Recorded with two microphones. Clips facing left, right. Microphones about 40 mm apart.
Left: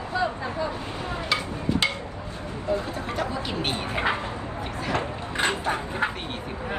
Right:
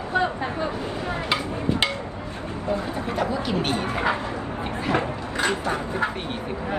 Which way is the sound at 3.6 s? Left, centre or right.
Left.